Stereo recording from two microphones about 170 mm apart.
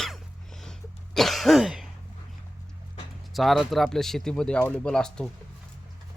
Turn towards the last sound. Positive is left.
turn(degrees=5)  # may be behind; listen again after turning